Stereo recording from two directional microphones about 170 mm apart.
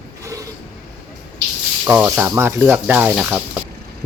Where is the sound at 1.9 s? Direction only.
10° right (ahead or behind).